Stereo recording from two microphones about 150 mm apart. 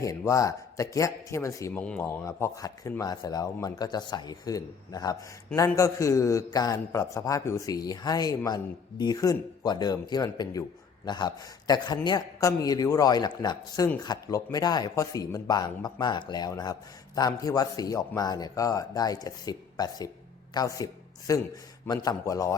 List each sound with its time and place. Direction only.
0.0 s a man's voice: 20° left (ahead or behind)